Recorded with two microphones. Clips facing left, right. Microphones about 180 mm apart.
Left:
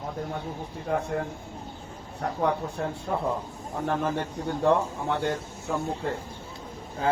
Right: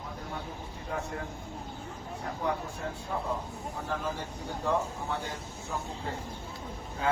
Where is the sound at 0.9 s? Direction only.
60° left (ahead or behind).